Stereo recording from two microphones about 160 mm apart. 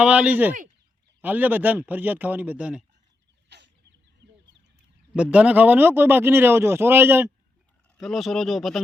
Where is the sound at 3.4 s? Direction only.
90° right.